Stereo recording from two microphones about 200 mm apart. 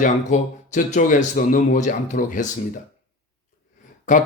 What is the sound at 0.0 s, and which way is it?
Speech, 40° left (ahead or behind).